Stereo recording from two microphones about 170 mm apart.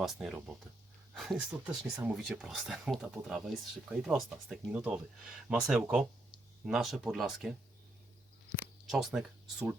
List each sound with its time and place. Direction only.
0.0 s speech: centre (ahead or behind)
8.5 s speech: 5° right (ahead or behind)